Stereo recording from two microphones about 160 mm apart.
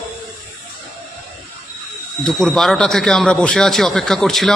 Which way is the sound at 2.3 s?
5° left (ahead or behind).